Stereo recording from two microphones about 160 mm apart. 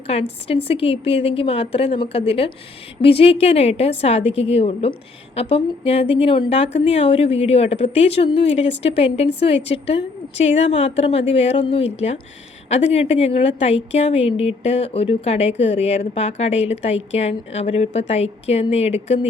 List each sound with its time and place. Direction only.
0.1 s a woman's voice: 35° left (ahead or behind)